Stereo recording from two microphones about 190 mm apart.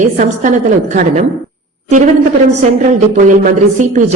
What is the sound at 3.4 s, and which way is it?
Speech, 45° right (ahead or behind).